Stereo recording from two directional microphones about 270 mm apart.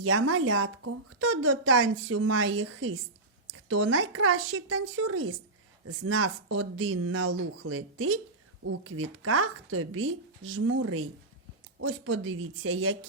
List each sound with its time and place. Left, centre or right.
0.0 s speech: right